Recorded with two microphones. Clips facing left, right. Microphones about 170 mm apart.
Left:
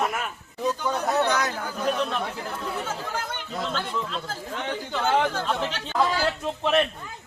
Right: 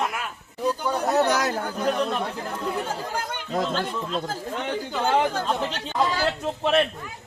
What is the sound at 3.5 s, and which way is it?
Speech, 45° right (ahead or behind).